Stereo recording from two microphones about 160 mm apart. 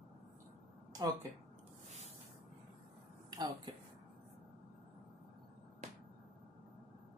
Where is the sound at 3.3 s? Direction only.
25° right (ahead or behind).